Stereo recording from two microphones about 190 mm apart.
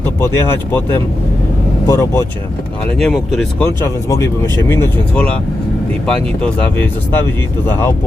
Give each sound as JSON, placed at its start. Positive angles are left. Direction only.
{"t": 0.2, "sound": "speech", "side_deg": 10}
{"t": 1.9, "sound": "speech", "side_deg": 15}
{"t": 3.0, "sound": "speech", "side_deg": 0}
{"t": 3.8, "sound": "speech", "side_deg": 15}